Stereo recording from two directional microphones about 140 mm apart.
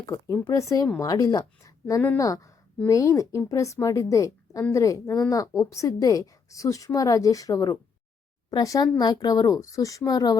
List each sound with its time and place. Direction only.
0.0 s a woman's voice: 20° left (ahead or behind)